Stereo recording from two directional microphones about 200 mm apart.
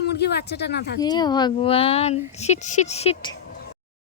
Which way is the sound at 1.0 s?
20° left (ahead or behind).